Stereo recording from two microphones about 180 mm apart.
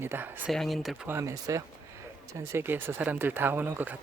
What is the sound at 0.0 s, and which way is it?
Speech, 15° right (ahead or behind).